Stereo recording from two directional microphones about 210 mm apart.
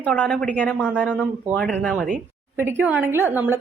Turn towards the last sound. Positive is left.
turn(degrees=-10)  # may be behind; listen again after turning